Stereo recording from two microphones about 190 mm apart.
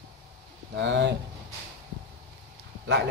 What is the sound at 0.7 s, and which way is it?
Speech, 65° right (ahead or behind).